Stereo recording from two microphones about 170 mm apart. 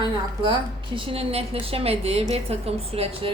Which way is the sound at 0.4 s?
30° right (ahead or behind).